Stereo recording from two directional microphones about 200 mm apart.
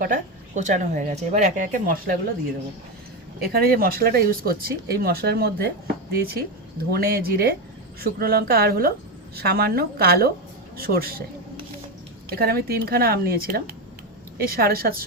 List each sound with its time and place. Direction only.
0.0 s speech: 40° right (ahead or behind)
3.4 s speech: 50° right (ahead or behind)
12.3 s speech: 50° right (ahead or behind)